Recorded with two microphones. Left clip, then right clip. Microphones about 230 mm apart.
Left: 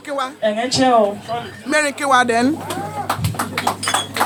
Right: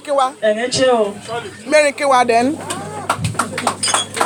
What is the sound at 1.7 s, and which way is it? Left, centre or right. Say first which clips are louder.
Speech: right 3 dB; centre.